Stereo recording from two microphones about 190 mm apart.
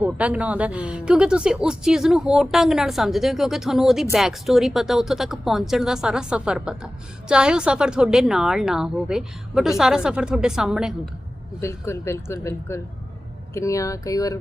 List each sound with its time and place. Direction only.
0.0 s speech: 5° right (ahead or behind)
11.6 s speech: 15° left (ahead or behind)